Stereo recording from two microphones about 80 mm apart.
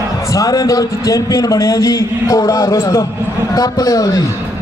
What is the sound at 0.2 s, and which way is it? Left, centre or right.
A man's voice, left.